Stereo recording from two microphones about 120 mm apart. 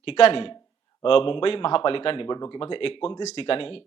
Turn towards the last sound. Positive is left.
turn(degrees=50)  # may be behind; listen again after turning